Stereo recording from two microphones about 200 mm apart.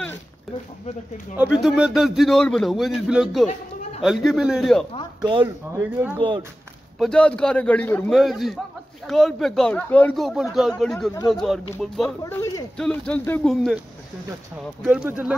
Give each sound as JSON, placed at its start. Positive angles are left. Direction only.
{"t": 1.6, "sound": "speech", "side_deg": 0}
{"t": 5.4, "sound": "speech", "side_deg": -10}
{"t": 6.1, "sound": "speech", "side_deg": -25}
{"t": 7.0, "sound": "speech", "side_deg": 5}
{"t": 12.3, "sound": "a sound", "side_deg": 15}
{"t": 12.7, "sound": "speech", "side_deg": 5}
{"t": 14.8, "sound": "speech", "side_deg": -5}